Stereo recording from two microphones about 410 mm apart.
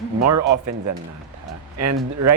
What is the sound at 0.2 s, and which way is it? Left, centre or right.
Speech, right.